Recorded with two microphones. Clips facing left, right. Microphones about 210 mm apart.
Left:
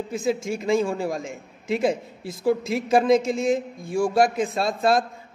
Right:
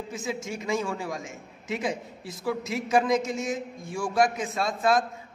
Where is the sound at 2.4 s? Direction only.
30° left (ahead or behind).